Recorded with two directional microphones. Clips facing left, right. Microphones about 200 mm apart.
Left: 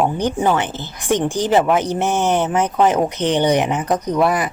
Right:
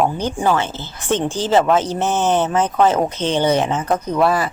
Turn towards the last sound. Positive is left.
turn(degrees=15)  # may be behind; listen again after turning